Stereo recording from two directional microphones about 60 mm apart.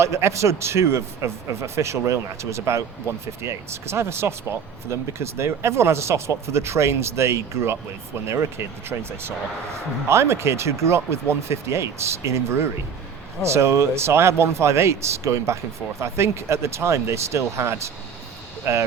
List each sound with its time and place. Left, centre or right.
0.0 s speech: right